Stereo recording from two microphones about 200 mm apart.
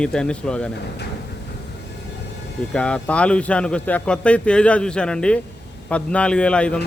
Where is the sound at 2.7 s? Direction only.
5° left (ahead or behind).